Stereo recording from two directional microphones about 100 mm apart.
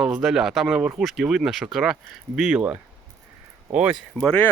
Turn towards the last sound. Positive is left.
turn(degrees=5)  # may be behind; listen again after turning